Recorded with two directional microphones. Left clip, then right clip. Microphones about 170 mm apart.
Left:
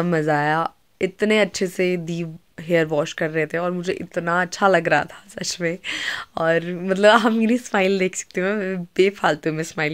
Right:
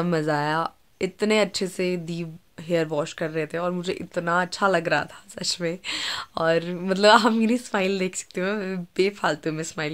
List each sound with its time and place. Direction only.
0.0 s speech: 20° left (ahead or behind)